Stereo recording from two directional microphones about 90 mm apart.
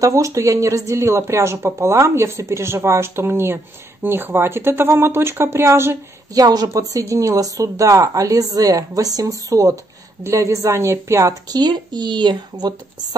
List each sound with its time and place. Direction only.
0.0 s speech: 35° right (ahead or behind)
6.3 s speech: 45° right (ahead or behind)
11.5 s speech: 50° right (ahead or behind)